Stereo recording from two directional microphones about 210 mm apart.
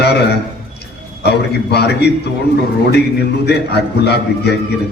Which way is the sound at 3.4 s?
50° left (ahead or behind).